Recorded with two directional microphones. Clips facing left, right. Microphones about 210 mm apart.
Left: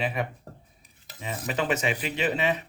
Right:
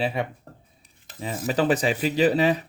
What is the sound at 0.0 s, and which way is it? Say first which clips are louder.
Speech: right 3 dB; 30° right (ahead or behind).